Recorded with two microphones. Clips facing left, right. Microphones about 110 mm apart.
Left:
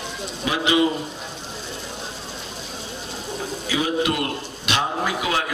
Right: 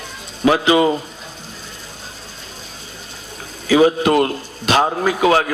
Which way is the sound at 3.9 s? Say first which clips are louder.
Right 7 dB; 40° right (ahead or behind).